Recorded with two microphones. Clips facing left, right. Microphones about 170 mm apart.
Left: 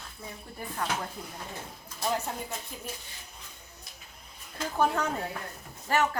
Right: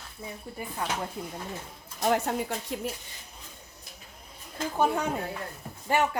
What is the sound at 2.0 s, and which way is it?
Speech, 70° right (ahead or behind).